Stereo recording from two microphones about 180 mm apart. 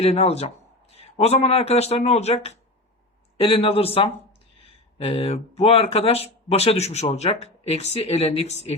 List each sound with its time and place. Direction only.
0.0 s speech: 35° left (ahead or behind)